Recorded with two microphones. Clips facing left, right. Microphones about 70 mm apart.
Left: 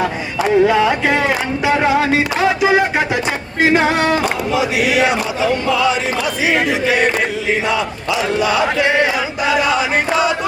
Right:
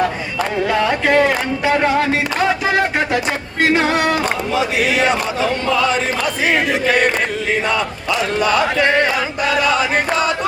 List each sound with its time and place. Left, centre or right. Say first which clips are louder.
0.7 s a sound: left 1 dB; centre
1.6 s music: left 1 dB; centre
7.7 s battle cry: left 1 dB; right